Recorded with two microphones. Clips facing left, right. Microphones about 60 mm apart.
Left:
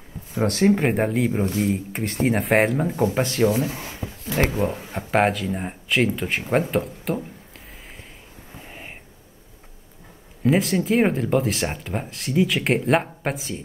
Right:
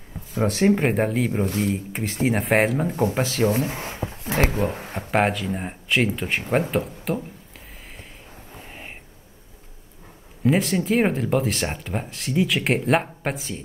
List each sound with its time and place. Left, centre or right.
0.7 s speech: centre
3.4 s speech: right
4.9 s speech: centre
8.6 s a sound: centre
10.4 s speech: centre